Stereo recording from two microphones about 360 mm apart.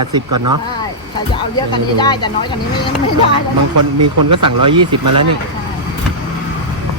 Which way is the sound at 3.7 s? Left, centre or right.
Right.